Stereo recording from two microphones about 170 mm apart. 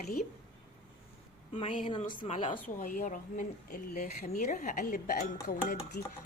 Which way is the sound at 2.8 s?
50° left (ahead or behind).